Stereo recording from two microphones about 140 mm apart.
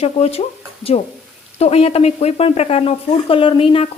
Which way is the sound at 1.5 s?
45° left (ahead or behind).